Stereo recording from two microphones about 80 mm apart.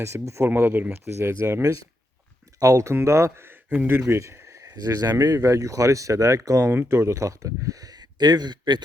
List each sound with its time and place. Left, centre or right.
0.0 s speech: right
2.6 s speech: right
4.0 s a sound: right
4.6 s speech: right